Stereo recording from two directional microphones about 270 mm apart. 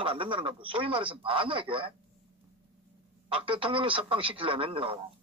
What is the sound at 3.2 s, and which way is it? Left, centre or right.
Speech, centre.